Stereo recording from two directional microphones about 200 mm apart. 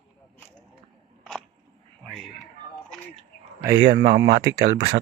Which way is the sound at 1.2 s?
5° left (ahead or behind).